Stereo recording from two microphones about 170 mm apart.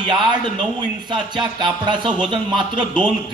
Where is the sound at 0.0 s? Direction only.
25° right (ahead or behind).